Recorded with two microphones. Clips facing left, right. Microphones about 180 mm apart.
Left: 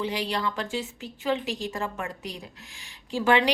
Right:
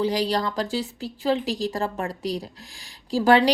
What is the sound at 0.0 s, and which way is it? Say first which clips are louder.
Speech: right 5 dB; 35° right (ahead or behind).